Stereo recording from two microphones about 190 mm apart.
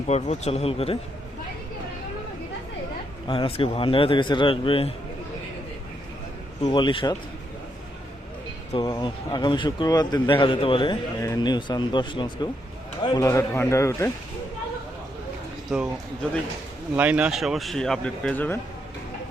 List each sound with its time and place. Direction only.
0.1 s speech: 35° left (ahead or behind)
3.2 s speech: 30° left (ahead or behind)
6.7 s speech: 25° left (ahead or behind)
8.7 s speech: 25° left (ahead or behind)
15.7 s speech: 5° right (ahead or behind)
16.9 s speech: 5° right (ahead or behind); by 18.6 s 10° left (ahead or behind)